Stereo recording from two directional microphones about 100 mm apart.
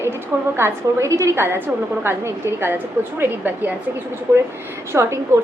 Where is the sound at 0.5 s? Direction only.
25° right (ahead or behind).